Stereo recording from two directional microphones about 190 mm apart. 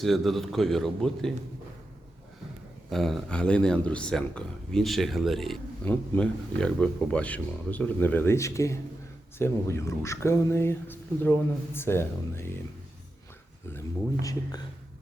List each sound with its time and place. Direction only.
0.0 s a man's voice: centre (ahead or behind)
2.9 s a man's voice: centre (ahead or behind)
13.7 s speech: 20° left (ahead or behind)